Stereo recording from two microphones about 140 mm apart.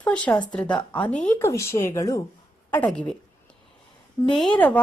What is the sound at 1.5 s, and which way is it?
A woman's voice, 20° left (ahead or behind).